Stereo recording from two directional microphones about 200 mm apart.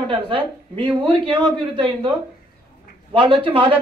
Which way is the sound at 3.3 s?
25° right (ahead or behind).